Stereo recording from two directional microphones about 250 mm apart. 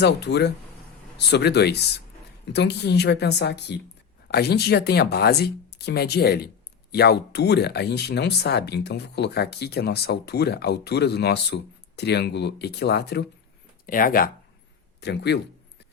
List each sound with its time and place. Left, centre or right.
0.0 s speech: left